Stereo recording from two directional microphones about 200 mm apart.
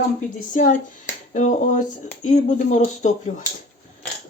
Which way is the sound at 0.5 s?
40° left (ahead or behind).